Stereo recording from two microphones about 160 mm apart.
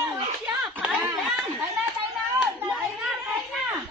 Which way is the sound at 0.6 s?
Centre (ahead or behind).